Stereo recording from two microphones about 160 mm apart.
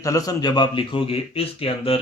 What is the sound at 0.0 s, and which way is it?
Speech, 20° left (ahead or behind).